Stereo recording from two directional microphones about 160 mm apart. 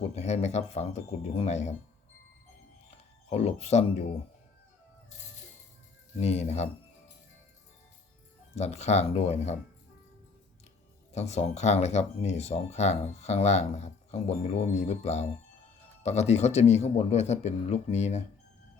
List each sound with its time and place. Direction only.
0.0 s speech: 40° left (ahead or behind)
3.2 s speech: 40° left (ahead or behind)
6.1 s speech: 40° left (ahead or behind)
8.5 s speech: 45° left (ahead or behind)
11.1 s speech: 45° left (ahead or behind)